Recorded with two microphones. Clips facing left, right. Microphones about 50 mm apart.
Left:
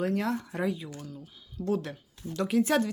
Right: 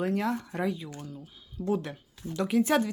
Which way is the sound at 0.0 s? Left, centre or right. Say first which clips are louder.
Even; centre.